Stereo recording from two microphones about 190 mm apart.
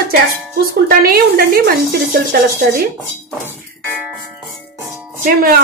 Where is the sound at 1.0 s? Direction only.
55° right (ahead or behind).